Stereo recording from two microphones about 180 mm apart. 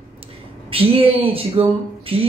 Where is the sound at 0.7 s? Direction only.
30° right (ahead or behind).